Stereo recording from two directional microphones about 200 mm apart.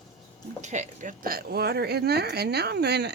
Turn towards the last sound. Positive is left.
turn(degrees=-55)  # may be behind; listen again after turning